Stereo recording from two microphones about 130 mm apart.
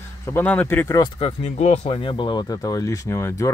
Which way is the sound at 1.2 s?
55° left (ahead or behind).